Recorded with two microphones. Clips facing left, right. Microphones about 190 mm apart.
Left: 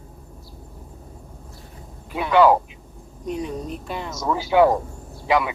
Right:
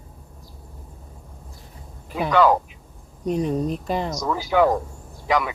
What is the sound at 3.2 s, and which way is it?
Speech, 40° right (ahead or behind).